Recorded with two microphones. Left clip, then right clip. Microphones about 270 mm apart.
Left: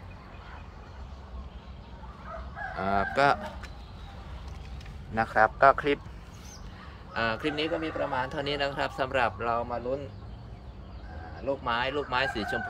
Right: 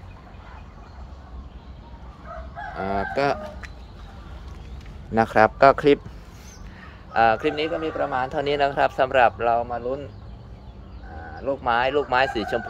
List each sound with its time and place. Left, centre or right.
2.8 s livestock: centre
5.1 s speech: right
7.2 s speech: centre
11.4 s speech: centre